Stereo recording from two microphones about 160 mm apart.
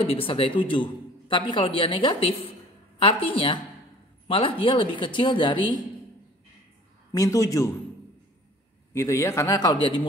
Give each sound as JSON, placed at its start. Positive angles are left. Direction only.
{"t": 0.0, "sound": "speech", "side_deg": 35}
{"t": 7.1, "sound": "speech", "side_deg": 20}
{"t": 8.9, "sound": "speech", "side_deg": 20}